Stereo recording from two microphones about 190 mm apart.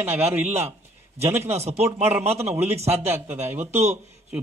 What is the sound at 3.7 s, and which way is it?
Speech, 35° right (ahead or behind).